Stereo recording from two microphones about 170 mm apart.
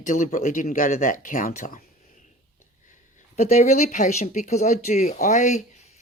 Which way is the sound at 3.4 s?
40° left (ahead or behind).